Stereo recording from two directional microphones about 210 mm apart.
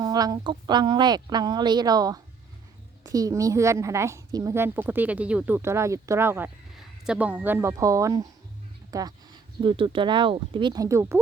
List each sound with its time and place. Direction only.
0.0 s a woman's voice: 15° right (ahead or behind)